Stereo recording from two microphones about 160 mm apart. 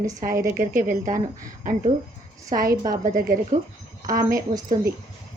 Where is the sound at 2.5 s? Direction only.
65° right (ahead or behind).